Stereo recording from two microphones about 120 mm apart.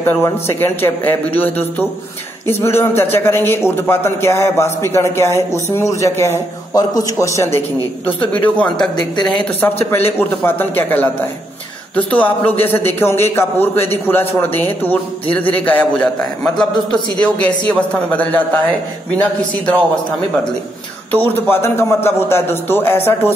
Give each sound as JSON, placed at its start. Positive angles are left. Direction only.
{"t": 0.0, "sound": "a man's voice", "side_deg": 20}
{"t": 8.3, "sound": "a man's voice", "side_deg": 10}
{"t": 9.8, "sound": "a man's voice", "side_deg": 20}
{"t": 21.1, "sound": "a man's voice", "side_deg": 15}